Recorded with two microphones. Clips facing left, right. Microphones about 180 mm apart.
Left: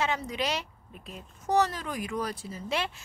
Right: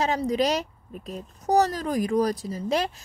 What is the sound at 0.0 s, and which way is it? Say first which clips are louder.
Speech: right 7 dB; 35° right (ahead or behind).